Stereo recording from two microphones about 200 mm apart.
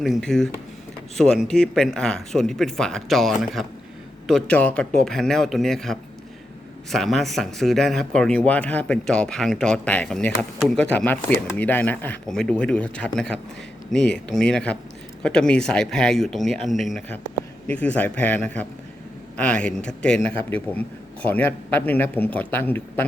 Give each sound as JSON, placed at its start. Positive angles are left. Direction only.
{"t": 0.0, "sound": "a man's voice", "side_deg": 0}